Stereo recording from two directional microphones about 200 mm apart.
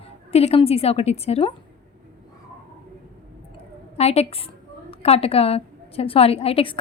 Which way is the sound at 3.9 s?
30° left (ahead or behind).